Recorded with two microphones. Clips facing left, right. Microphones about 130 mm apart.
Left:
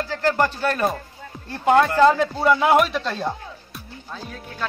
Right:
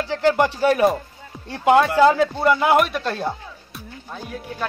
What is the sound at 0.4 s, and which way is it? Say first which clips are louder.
Speech: right 5 dB; 15° right (ahead or behind).